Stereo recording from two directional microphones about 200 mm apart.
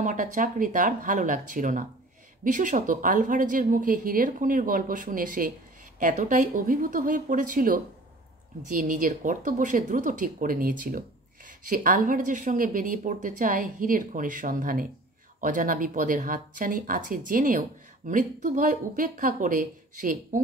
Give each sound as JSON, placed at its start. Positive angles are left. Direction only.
{"t": 0.0, "sound": "a woman's voice", "side_deg": -40}